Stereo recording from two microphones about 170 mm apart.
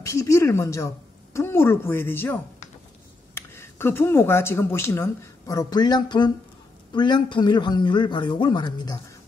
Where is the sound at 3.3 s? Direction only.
15° left (ahead or behind).